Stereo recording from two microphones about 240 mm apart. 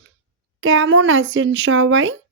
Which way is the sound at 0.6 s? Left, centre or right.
Right.